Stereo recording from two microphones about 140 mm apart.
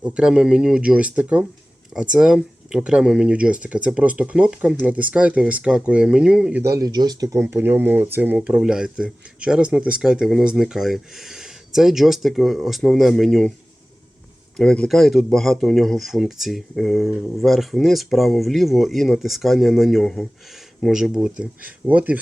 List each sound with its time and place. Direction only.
0.0 s speech: 5° right (ahead or behind)
6.6 s speech: 20° right (ahead or behind)
7.3 s speech: 15° right (ahead or behind); by 13.5 s centre (ahead or behind)
14.5 s speech: 5° left (ahead or behind); by 22.2 s 10° right (ahead or behind)